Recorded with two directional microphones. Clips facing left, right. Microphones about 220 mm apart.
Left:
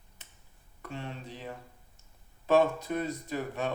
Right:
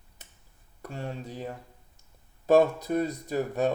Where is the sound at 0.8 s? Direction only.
45° right (ahead or behind).